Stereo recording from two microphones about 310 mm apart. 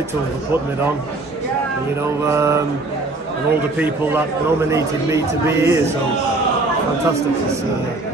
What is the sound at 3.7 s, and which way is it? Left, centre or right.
Speech, centre.